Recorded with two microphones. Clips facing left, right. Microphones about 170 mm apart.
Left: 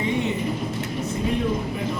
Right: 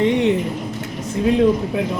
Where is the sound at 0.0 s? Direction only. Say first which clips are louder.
Right 8 dB; 75° right (ahead or behind).